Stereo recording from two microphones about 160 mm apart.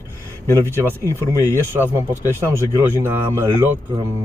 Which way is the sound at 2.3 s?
15° right (ahead or behind).